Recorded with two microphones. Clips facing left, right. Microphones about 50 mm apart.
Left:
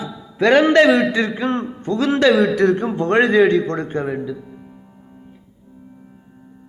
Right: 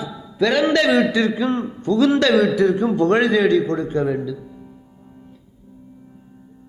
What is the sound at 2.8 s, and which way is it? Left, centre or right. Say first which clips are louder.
Speech: even; left.